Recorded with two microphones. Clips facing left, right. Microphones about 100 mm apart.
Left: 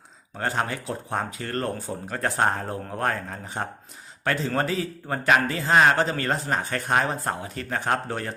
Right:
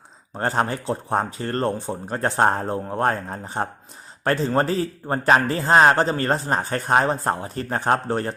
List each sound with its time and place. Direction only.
0.3 s a man's voice: 35° right (ahead or behind)